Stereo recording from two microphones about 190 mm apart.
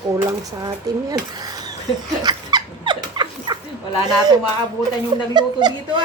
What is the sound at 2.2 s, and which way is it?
Dog, 20° right (ahead or behind).